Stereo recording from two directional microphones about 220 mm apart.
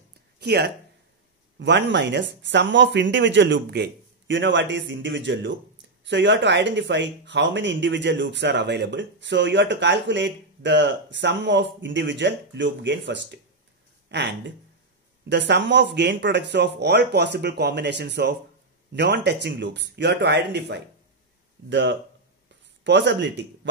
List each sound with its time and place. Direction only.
0.4 s speech: 50° right (ahead or behind)